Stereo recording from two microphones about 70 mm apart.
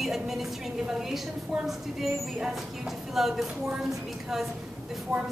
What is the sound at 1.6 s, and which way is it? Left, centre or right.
A woman's voice, centre.